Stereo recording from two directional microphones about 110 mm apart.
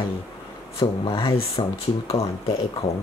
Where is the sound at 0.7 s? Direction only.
55° left (ahead or behind).